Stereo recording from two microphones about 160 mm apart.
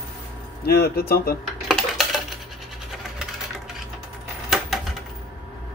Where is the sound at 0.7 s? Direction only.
75° left (ahead or behind).